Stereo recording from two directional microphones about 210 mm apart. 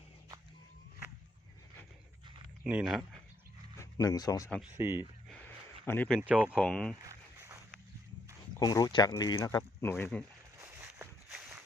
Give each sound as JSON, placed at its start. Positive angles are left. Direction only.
{"t": 2.6, "sound": "speech", "side_deg": -5}
{"t": 3.8, "sound": "speech", "side_deg": 15}
{"t": 4.4, "sound": "speech", "side_deg": -5}
{"t": 5.8, "sound": "speech", "side_deg": 10}
{"t": 6.1, "sound": "speech", "side_deg": -5}
{"t": 6.6, "sound": "speech", "side_deg": 5}
{"t": 6.9, "sound": "a sound", "side_deg": -15}
{"t": 8.5, "sound": "speech", "side_deg": 15}
{"t": 10.6, "sound": "a sound", "side_deg": -10}